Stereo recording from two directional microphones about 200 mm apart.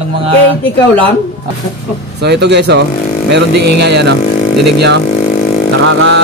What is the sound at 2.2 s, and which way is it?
Mantra, 55° right (ahead or behind).